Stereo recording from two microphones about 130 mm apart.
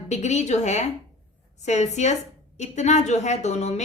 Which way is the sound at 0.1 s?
60° left (ahead or behind).